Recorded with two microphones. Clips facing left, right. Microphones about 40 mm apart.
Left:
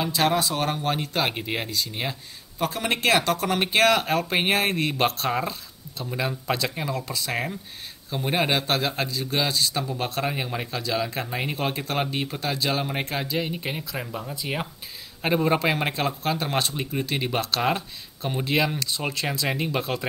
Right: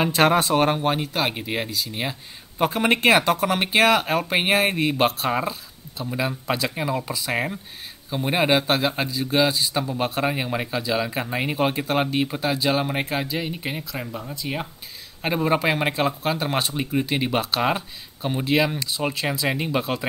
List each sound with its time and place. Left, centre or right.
0.0 s speech: right
0.7 s speech: centre
2.6 s a man's voice: right; by 20.1 s centre